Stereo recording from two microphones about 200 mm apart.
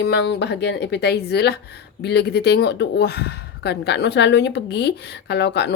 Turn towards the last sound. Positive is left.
turn(degrees=60)  # may be behind; listen again after turning